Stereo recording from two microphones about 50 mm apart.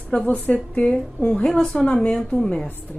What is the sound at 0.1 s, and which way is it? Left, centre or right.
A woman's voice, centre.